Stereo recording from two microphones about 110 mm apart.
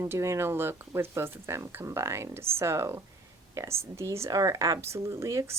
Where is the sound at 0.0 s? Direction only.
25° right (ahead or behind).